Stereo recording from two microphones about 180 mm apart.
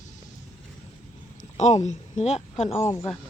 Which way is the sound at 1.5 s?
40° left (ahead or behind).